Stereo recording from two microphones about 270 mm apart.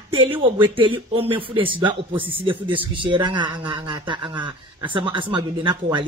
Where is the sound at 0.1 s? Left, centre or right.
Centre.